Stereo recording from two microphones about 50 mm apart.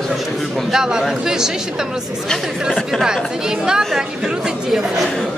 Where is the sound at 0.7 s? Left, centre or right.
Centre.